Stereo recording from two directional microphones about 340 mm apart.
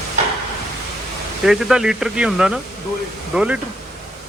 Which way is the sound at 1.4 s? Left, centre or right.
Centre.